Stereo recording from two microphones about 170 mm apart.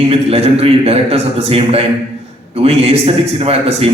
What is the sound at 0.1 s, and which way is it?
A man's voice, 35° right (ahead or behind).